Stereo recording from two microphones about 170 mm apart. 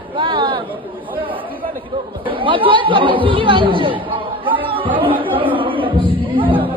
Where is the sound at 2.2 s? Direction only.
30° right (ahead or behind).